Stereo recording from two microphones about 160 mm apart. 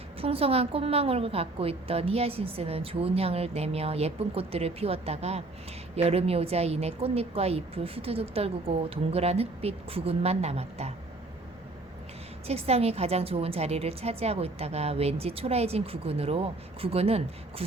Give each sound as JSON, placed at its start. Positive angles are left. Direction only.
{"t": 0.2, "sound": "a woman's voice", "side_deg": -35}
{"t": 12.5, "sound": "a woman's voice", "side_deg": -40}